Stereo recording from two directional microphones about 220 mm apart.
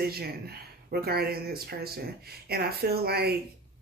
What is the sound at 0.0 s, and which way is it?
Speech, 45° right (ahead or behind).